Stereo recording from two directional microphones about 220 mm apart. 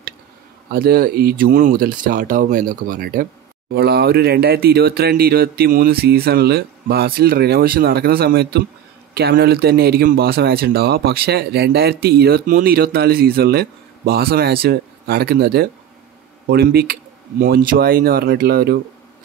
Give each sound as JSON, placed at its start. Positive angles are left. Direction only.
{"t": 0.7, "sound": "speech", "side_deg": -45}